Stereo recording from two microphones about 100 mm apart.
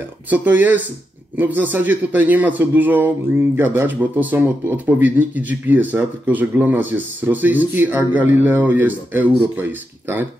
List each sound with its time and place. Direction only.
0.3 s a man's voice: 15° right (ahead or behind)